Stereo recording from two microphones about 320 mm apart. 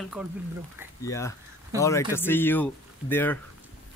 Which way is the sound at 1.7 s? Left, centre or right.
Centre.